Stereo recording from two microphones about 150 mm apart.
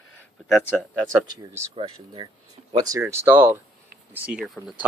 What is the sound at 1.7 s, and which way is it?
Speech, 40° right (ahead or behind).